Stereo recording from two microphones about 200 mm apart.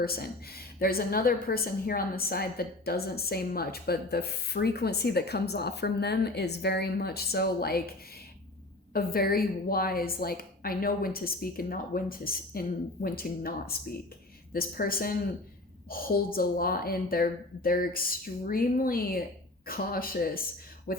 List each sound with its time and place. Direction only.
0.0 s a woman's voice: 50° left (ahead or behind)
8.9 s a woman's voice: 50° left (ahead or behind)